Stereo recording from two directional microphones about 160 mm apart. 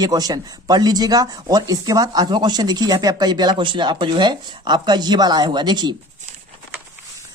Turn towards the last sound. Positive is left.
turn(degrees=-30)  # may be behind; listen again after turning